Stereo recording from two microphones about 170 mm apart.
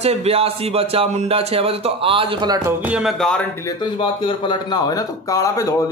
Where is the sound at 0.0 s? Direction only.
40° right (ahead or behind).